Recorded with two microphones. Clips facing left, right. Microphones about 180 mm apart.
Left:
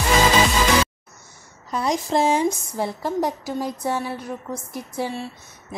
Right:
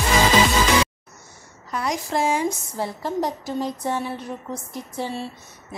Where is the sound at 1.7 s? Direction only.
25° left (ahead or behind).